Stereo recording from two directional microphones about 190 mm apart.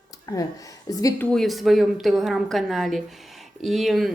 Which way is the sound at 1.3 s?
Centre (ahead or behind).